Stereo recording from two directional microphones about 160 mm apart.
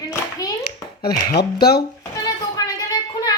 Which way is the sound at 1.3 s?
75° left (ahead or behind).